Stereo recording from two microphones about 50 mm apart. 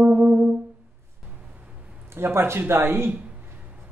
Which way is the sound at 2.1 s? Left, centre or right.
Right.